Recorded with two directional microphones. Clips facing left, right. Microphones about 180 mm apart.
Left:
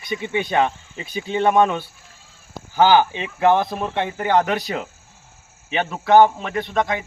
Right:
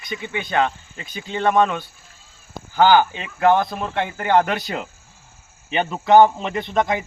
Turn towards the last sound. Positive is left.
turn(degrees=0)  # may be behind; listen again after turning